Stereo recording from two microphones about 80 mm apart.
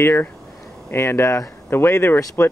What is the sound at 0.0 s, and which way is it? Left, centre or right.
Speech, left.